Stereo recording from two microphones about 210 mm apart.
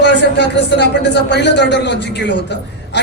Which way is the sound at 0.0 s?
55° left (ahead or behind).